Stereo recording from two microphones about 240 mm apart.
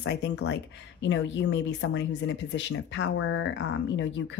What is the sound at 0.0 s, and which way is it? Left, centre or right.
Speech, left.